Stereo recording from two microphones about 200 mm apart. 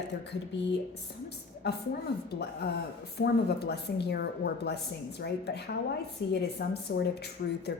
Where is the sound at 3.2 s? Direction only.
55° left (ahead or behind).